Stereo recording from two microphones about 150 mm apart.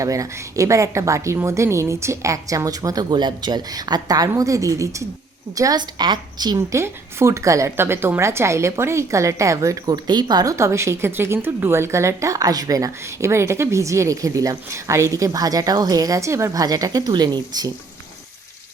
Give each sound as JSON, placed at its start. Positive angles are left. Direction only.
{"t": 0.0, "sound": "a woman's voice", "side_deg": -20}